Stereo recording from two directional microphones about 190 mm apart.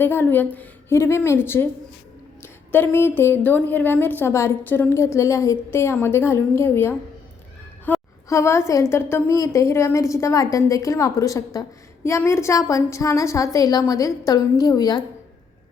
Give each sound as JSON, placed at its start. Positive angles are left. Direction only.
{"t": 0.0, "sound": "a woman's voice", "side_deg": 10}
{"t": 7.9, "sound": "a sound", "side_deg": 10}
{"t": 8.3, "sound": "a woman's voice", "side_deg": 15}